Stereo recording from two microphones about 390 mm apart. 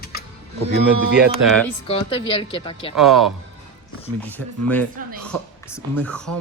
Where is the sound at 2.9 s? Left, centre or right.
Centre.